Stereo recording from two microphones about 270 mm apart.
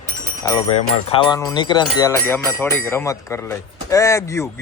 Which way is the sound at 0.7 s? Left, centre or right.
Centre.